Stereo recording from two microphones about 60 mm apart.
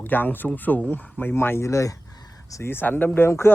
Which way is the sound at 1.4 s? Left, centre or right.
Left.